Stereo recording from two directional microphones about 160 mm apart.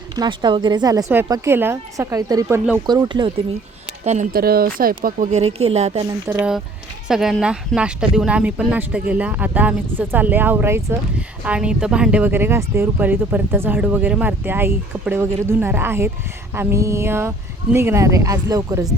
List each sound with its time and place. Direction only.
0.2 s speech: 30° right (ahead or behind)
4.0 s speech: 45° right (ahead or behind)
4.3 s speech: 70° right (ahead or behind)
5.3 s speech: 40° right (ahead or behind)
6.1 s speech: 25° right (ahead or behind)
7.1 s speech: centre (ahead or behind); by 18.9 s 20° right (ahead or behind)